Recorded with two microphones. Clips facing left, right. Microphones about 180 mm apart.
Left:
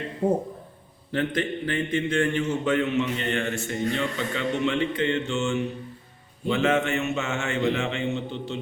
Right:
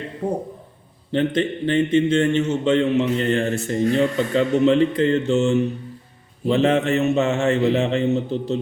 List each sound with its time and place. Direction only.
1.1 s a man's voice: 25° right (ahead or behind)